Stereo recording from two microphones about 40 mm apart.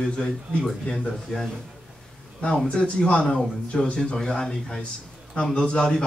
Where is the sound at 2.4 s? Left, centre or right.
Left.